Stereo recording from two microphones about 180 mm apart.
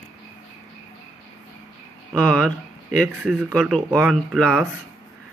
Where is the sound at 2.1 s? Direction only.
5° left (ahead or behind).